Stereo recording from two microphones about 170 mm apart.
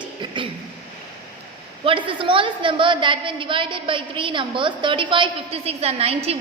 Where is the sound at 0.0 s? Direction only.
30° right (ahead or behind).